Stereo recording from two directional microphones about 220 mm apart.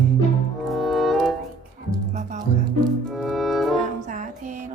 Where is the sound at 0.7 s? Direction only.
Centre (ahead or behind).